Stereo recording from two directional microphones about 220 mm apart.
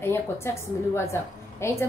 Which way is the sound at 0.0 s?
10° left (ahead or behind).